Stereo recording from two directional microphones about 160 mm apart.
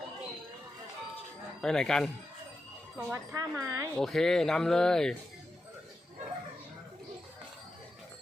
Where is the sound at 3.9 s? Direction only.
Centre (ahead or behind).